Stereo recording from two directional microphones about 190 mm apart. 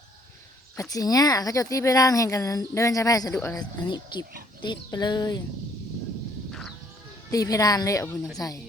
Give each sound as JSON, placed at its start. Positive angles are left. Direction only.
{"t": 0.8, "sound": "speech", "side_deg": 20}
{"t": 7.3, "sound": "speech", "side_deg": 20}